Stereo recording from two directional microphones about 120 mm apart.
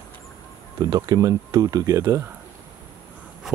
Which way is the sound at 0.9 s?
35° right (ahead or behind).